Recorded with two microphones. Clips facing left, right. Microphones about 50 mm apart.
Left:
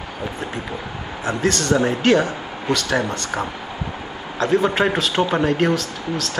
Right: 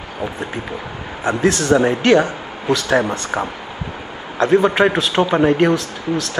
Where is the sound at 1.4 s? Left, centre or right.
Centre.